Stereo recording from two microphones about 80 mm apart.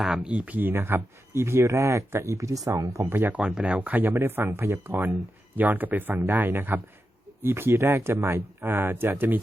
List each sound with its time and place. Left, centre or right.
0.2 s speech: centre; by 3.1 s right
3.1 s speech: right